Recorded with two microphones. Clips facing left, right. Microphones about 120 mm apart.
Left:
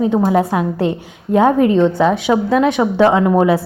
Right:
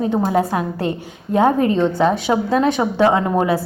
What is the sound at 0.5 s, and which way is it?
A woman's voice, 20° left (ahead or behind).